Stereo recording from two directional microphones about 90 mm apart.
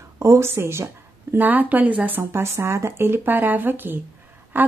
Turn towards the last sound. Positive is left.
turn(degrees=-20)  # may be behind; listen again after turning